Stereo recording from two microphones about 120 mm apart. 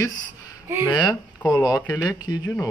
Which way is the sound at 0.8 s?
40° left (ahead or behind).